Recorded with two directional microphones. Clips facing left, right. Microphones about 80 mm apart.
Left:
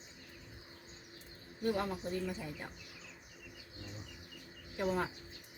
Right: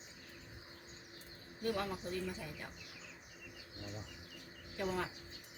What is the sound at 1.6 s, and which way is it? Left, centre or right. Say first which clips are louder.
Speech: left 3 dB; left.